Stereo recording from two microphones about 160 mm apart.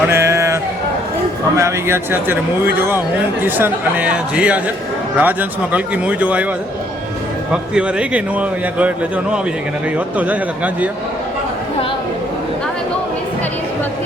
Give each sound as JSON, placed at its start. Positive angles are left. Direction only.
{"t": 0.1, "sound": "a sound", "side_deg": -15}
{"t": 1.5, "sound": "a man's voice", "side_deg": -15}
{"t": 3.4, "sound": "a man's voice", "side_deg": -10}
{"t": 7.5, "sound": "a man's voice", "side_deg": -5}